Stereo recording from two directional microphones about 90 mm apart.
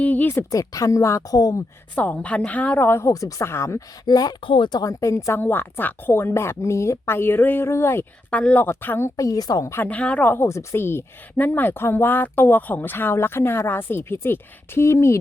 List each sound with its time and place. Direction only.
0.0 s a sound: 20° left (ahead or behind)
0.5 s a woman's voice: 40° left (ahead or behind)
2.0 s a woman's voice: 15° left (ahead or behind)
3.1 s a woman's voice: 40° left (ahead or behind)
4.0 s speech: 45° left (ahead or behind)
4.4 s speech: 65° left (ahead or behind)
4.8 s a woman's voice: 40° left (ahead or behind)
8.3 s a woman's voice: 15° left (ahead or behind)
9.1 s a woman's voice: 40° left (ahead or behind)
9.7 s a woman's voice: 20° left (ahead or behind)